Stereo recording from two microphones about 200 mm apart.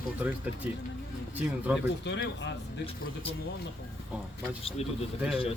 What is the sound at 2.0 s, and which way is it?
Speech, 60° left (ahead or behind).